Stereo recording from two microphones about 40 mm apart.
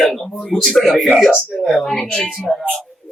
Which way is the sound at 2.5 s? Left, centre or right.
Centre.